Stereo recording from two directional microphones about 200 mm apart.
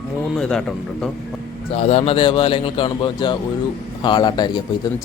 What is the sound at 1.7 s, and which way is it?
Speech, 30° left (ahead or behind).